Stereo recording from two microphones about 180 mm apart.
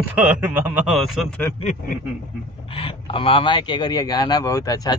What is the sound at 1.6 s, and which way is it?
Speech, 40° left (ahead or behind).